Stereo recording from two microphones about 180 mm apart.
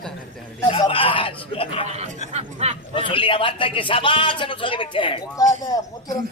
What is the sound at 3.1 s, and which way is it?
Speech, 30° left (ahead or behind).